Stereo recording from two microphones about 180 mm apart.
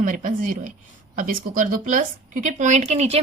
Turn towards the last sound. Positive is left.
turn(degrees=-35)  # may be behind; listen again after turning